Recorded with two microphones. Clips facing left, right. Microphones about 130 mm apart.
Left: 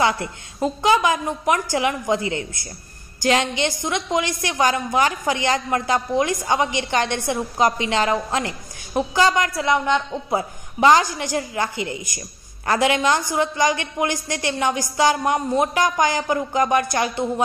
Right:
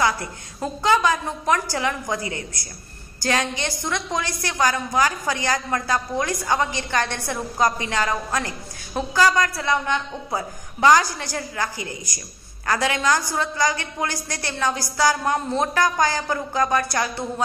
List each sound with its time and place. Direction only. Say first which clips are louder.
0.0 s a woman's voice: left 2 dB; 20° left (ahead or behind)